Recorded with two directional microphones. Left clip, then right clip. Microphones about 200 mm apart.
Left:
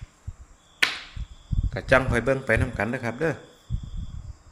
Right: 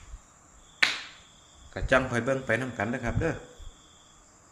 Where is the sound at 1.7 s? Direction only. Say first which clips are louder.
Left 4 dB; 45° left (ahead or behind).